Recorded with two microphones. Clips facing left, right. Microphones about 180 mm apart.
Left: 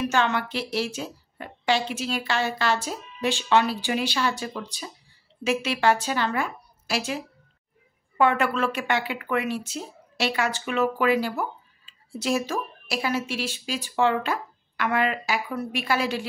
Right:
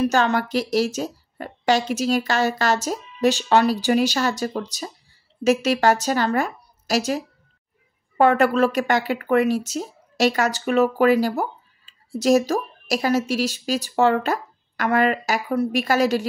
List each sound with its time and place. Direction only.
0.0 s speech: 40° right (ahead or behind)